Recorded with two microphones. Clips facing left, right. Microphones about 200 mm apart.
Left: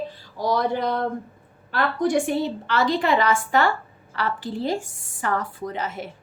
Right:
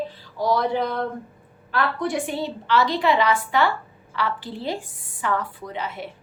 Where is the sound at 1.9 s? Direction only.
45° left (ahead or behind).